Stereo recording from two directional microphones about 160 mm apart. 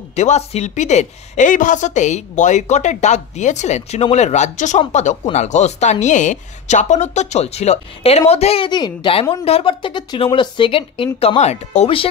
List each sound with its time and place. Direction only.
0.1 s a woman's voice: 45° left (ahead or behind)